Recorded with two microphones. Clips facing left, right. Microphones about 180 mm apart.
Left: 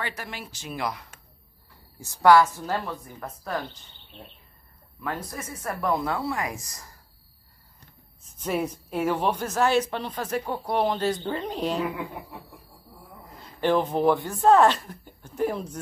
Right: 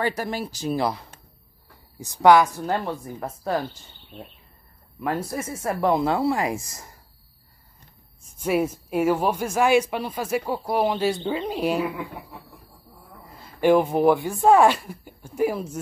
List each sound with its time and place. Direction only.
0.0 s speech: 40° right (ahead or behind)
2.0 s a woman's voice: 20° right (ahead or behind)
2.8 s speech: 30° right (ahead or behind)
5.0 s speech: 30° right (ahead or behind)
8.2 s a woman's voice: 10° right (ahead or behind)
13.2 s speech: 10° right (ahead or behind)